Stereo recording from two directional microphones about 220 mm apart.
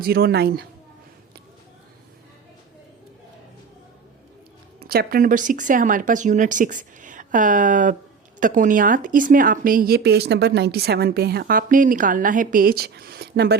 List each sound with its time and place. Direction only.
0.0 s speech: 45° right (ahead or behind)
4.8 s a woman's voice: 45° right (ahead or behind)